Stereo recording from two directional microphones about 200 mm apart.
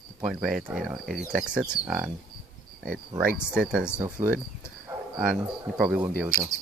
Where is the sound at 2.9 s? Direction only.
45° right (ahead or behind).